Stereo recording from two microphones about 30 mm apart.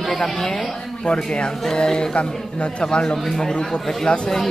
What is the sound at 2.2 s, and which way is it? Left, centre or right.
Speech, left.